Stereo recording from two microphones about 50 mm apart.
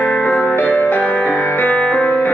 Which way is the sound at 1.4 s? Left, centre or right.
Left.